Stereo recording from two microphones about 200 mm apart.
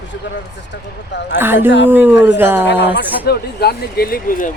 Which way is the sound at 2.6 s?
60° left (ahead or behind).